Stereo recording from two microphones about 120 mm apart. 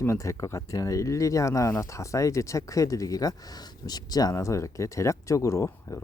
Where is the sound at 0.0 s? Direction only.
25° left (ahead or behind).